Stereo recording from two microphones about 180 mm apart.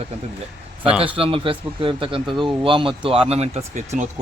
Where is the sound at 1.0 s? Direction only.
30° right (ahead or behind).